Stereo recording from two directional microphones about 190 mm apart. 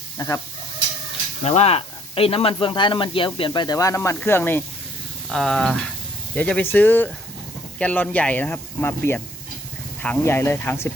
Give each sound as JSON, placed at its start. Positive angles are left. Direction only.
{"t": 0.2, "sound": "speech", "side_deg": 20}
{"t": 1.5, "sound": "speech", "side_deg": 35}